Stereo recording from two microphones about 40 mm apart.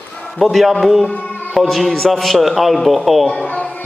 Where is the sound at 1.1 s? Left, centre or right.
Left.